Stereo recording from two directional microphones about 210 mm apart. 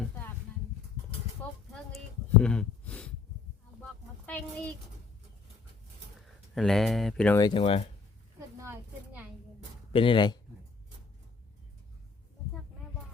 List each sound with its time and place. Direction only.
2.4 s speech: 5° left (ahead or behind)
4.3 s speech: 5° left (ahead or behind)
6.5 s speech: centre (ahead or behind)
7.3 s speech: 20° left (ahead or behind)
8.4 s a sound: 15° right (ahead or behind)
9.9 s speech: 25° left (ahead or behind)